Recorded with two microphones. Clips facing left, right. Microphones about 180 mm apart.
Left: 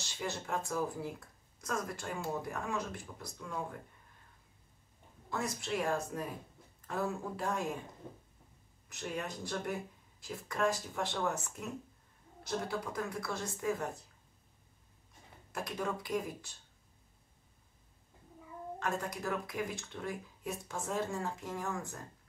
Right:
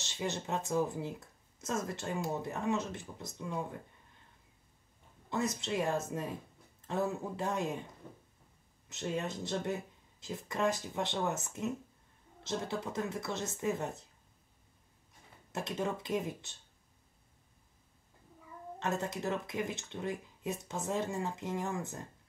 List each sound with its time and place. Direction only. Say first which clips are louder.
0.0 s speech: right 2 dB; 20° right (ahead or behind)
5.3 s speech: right 2 dB; 20° right (ahead or behind)
8.8 s speech: right 3 dB; 25° right (ahead or behind)
15.5 s speech: right 2 dB; 25° right (ahead or behind)
18.8 s speech: right 2 dB; 25° right (ahead or behind)